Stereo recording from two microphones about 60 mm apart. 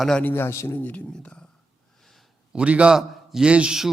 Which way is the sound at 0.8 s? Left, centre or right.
Left.